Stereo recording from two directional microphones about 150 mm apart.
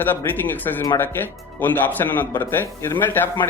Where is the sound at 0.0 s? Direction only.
15° left (ahead or behind).